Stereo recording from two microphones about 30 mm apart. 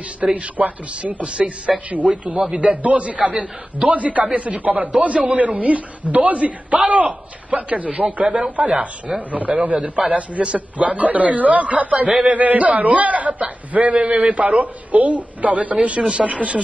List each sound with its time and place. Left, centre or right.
0.2 s a man's voice: right
1.7 s speech: centre
2.5 s a man's voice: right
2.8 s a man's voice: right
15.7 s a man's voice: right